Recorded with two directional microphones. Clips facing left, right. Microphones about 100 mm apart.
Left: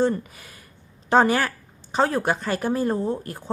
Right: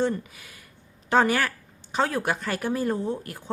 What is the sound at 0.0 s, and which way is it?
A woman's voice, 40° left (ahead or behind).